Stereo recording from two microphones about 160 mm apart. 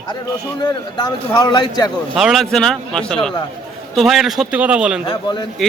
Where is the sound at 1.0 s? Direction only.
25° left (ahead or behind).